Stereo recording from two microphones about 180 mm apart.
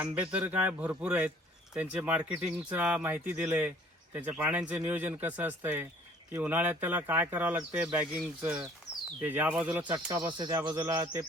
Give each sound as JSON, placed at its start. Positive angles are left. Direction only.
{"t": 0.0, "sound": "speech", "side_deg": -5}
{"t": 9.8, "sound": "speech", "side_deg": -25}